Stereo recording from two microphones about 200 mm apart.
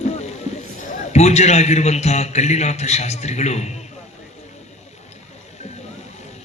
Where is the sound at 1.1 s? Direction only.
35° left (ahead or behind).